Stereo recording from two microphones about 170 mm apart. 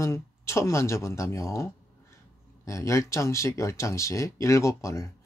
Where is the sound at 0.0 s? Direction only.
15° left (ahead or behind).